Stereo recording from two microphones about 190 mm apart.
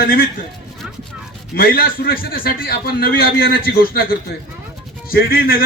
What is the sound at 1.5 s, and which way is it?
Speech, 50° left (ahead or behind).